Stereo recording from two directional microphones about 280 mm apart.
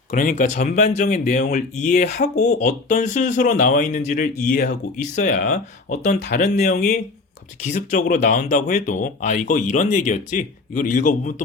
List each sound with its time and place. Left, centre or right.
0.1 s speech: left